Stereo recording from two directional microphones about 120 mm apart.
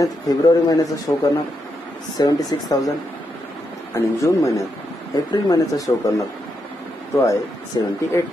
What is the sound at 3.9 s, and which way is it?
Speech, 25° left (ahead or behind).